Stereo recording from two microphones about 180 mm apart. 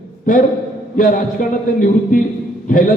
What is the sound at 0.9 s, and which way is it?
Speech, 50° left (ahead or behind).